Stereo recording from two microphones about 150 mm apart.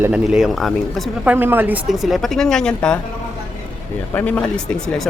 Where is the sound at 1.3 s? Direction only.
15° right (ahead or behind); by 3.0 s 5° left (ahead or behind).